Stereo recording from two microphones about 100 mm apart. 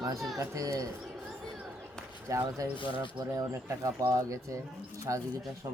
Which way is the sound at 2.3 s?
30° right (ahead or behind).